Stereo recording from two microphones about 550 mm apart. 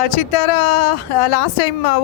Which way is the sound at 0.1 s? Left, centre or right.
Left.